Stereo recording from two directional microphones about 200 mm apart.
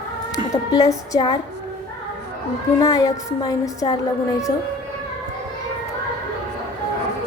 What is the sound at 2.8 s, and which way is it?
A woman's voice, 20° left (ahead or behind).